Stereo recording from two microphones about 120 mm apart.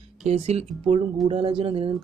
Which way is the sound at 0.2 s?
60° right (ahead or behind).